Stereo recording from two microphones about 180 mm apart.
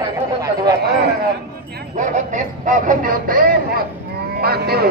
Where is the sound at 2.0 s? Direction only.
45° right (ahead or behind).